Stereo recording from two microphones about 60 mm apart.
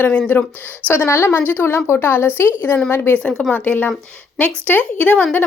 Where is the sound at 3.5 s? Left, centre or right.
Left.